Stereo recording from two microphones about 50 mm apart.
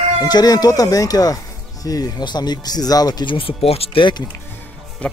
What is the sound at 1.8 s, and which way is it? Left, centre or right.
Speech, left.